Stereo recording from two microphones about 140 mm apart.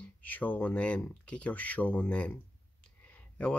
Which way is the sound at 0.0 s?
10° left (ahead or behind).